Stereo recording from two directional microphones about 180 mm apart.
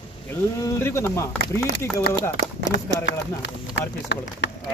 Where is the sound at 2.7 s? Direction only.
70° left (ahead or behind).